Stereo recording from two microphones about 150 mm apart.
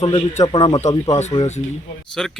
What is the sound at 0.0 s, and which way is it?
Speech, 35° left (ahead or behind).